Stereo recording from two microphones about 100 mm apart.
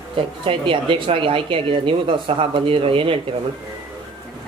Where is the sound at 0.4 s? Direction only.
60° right (ahead or behind).